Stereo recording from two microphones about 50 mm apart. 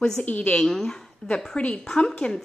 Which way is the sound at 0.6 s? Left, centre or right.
Centre.